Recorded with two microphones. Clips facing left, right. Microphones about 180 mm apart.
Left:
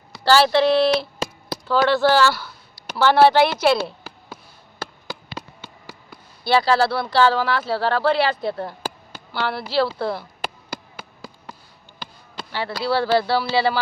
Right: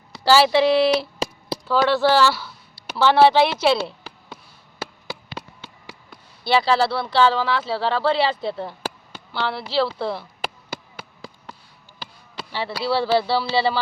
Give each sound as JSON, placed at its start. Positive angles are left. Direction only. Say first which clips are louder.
{"t": 0.3, "sound": "a woman's voice", "louder": "even", "side_deg": -5}
{"t": 4.8, "sound": "a sound", "louder": "even", "side_deg": -5}
{"t": 6.5, "sound": "speech", "louder": "left 1 dB", "side_deg": 0}
{"t": 8.2, "sound": "speech", "louder": "left 1 dB", "side_deg": -25}
{"t": 8.4, "sound": "speech", "louder": "left 1 dB", "side_deg": 0}
{"t": 10.7, "sound": "a sound", "louder": "even", "side_deg": 0}
{"t": 11.9, "sound": "speech", "louder": "even", "side_deg": 0}